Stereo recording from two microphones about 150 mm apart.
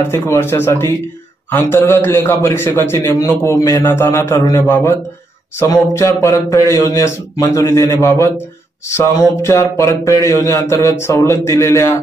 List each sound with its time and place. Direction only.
0.1 s a man's voice: 15° left (ahead or behind)
5.9 s speech: 20° left (ahead or behind)